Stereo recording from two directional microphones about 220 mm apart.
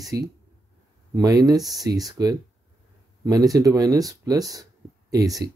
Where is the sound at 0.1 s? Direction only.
15° right (ahead or behind).